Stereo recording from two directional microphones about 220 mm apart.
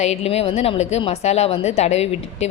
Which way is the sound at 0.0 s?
30° left (ahead or behind).